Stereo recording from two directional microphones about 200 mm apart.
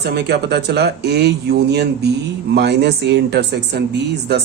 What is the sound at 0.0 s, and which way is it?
A man's voice, 55° right (ahead or behind).